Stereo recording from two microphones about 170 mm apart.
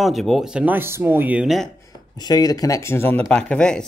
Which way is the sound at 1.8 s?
25° left (ahead or behind).